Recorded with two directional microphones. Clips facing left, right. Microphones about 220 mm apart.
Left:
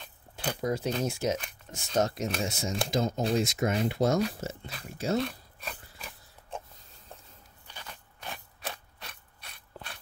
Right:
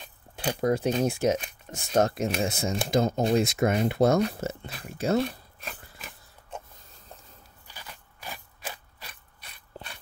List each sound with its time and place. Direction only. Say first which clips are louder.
0.6 s speech: right 6 dB; 55° right (ahead or behind)
5.6 s a sound: left 2 dB; centre (ahead or behind)
7.6 s crunch: even; 5° right (ahead or behind)